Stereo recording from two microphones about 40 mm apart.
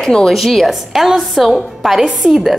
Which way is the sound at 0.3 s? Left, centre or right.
Centre.